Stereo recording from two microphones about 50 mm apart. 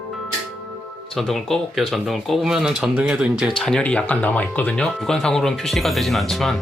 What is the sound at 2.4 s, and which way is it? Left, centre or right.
Speech, centre.